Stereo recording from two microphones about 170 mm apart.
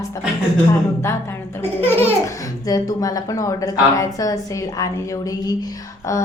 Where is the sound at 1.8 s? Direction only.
15° left (ahead or behind).